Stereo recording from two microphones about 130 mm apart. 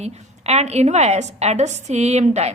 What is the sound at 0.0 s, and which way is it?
A woman's voice, 55° right (ahead or behind).